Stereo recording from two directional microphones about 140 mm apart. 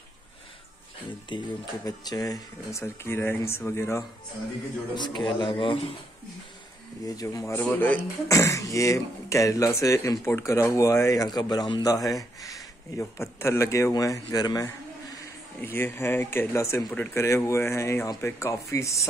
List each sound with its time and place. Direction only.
1.3 s speech: 30° left (ahead or behind)
4.9 s a man's voice: 30° left (ahead or behind)
7.1 s speech: 25° left (ahead or behind)
7.6 s speech: 10° left (ahead or behind)
8.3 s speech: 25° left (ahead or behind)
15.6 s speech: 15° left (ahead or behind)